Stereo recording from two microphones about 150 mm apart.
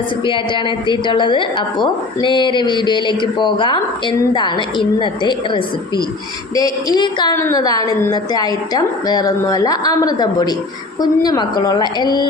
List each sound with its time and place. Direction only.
0.3 s a woman's voice: 35° left (ahead or behind)